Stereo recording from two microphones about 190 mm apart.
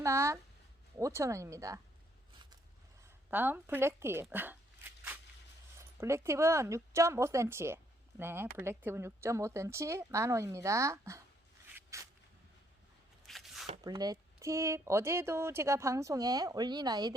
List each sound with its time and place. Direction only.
0.0 s speech: 15° right (ahead or behind)
3.2 s speech: 10° right (ahead or behind)
6.0 s speech: 15° right (ahead or behind)
11.7 s a sound: 15° right (ahead or behind)
13.2 s a sound: centre (ahead or behind)
13.8 s speech: 20° right (ahead or behind)